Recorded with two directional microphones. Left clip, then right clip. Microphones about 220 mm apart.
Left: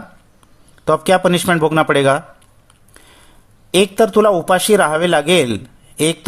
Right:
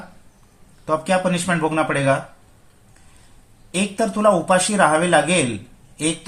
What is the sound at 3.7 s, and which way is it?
A man's voice, 55° left (ahead or behind).